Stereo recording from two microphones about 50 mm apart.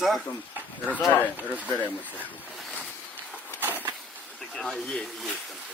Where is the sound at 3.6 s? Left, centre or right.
Right.